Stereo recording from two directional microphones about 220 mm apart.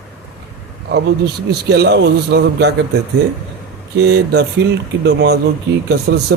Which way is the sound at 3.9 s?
50° right (ahead or behind).